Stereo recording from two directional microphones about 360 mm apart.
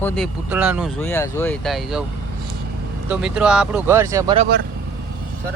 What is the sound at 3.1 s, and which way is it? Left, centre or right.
Speech, centre.